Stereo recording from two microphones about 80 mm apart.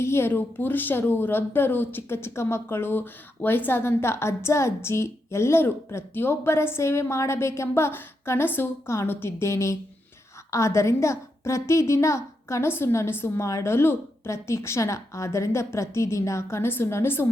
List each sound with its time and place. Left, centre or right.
0.0 s speech: left